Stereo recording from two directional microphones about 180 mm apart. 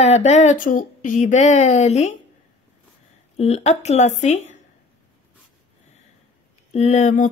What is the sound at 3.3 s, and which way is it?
A woman's voice, 35° left (ahead or behind).